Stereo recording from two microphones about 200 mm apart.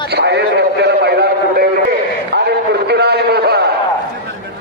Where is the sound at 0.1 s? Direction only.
55° right (ahead or behind).